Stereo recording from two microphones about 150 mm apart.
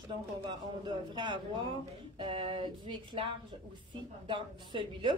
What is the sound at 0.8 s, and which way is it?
A woman's voice, 30° right (ahead or behind).